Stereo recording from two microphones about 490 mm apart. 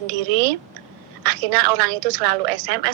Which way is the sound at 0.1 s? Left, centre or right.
Right.